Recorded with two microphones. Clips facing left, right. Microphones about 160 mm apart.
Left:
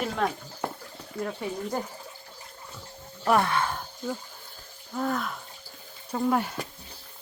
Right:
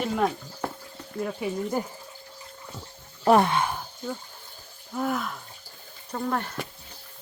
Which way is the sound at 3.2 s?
25° right (ahead or behind).